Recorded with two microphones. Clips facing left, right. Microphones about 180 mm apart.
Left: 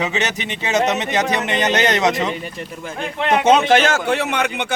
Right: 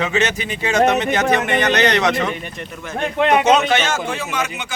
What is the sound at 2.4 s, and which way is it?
Speech, 30° left (ahead or behind).